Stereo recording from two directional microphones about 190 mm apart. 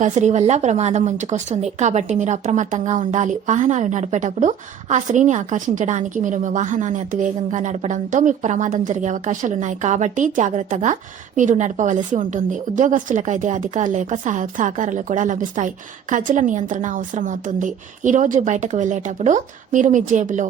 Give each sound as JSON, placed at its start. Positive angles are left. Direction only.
{"t": 0.0, "sound": "a woman's voice", "side_deg": -40}